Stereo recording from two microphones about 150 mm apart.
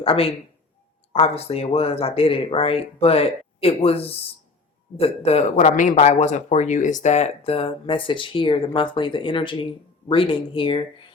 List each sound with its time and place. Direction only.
0.0 s speech: 40° left (ahead or behind)